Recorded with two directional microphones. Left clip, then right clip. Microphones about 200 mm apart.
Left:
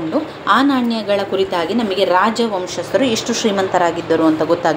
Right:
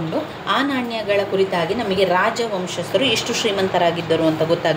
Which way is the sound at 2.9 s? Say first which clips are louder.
Left 2 dB; 20° left (ahead or behind).